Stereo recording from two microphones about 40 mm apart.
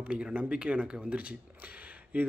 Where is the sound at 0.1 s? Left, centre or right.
Right.